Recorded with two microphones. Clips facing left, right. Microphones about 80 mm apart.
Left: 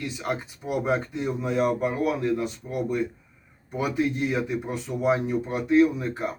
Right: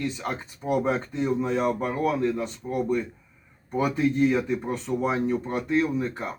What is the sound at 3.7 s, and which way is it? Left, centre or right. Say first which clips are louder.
Speech: right 3 dB; right.